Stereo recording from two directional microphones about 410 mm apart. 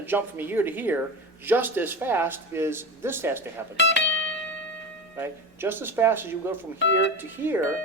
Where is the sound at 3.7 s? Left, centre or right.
Left.